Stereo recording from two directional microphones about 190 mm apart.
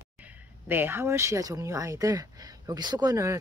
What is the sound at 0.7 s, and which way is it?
Speech, 10° right (ahead or behind).